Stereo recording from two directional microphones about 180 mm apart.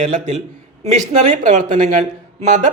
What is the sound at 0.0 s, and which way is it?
A man's voice, 40° right (ahead or behind).